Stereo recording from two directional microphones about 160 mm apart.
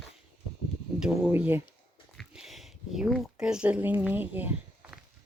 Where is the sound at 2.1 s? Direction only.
Centre (ahead or behind).